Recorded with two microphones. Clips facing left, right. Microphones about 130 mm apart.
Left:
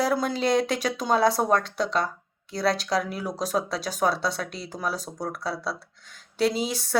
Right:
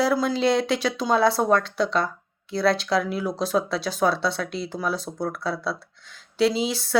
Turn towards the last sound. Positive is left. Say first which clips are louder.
# right 2 dB
turn(degrees=45)  # may be behind; listen again after turning